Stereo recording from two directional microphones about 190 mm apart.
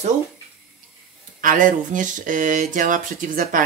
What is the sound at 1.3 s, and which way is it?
Speech, 45° right (ahead or behind).